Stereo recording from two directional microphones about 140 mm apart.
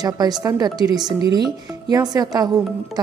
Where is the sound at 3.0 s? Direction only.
30° right (ahead or behind).